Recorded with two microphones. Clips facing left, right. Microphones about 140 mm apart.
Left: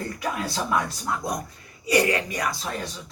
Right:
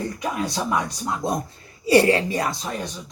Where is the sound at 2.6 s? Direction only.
15° right (ahead or behind).